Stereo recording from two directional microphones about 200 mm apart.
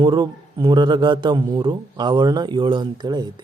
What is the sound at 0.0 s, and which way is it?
Speech, 20° right (ahead or behind).